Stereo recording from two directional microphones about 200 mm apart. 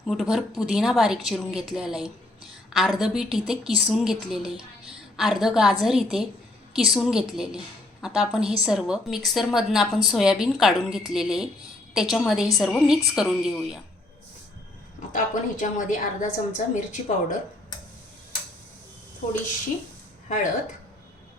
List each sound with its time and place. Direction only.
0.0 s a woman's voice: centre (ahead or behind)
15.1 s a woman's voice: 40° left (ahead or behind)
20.2 s speech: 40° left (ahead or behind)